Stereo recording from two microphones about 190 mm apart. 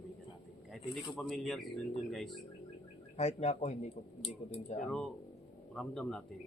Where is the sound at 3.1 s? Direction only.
35° left (ahead or behind).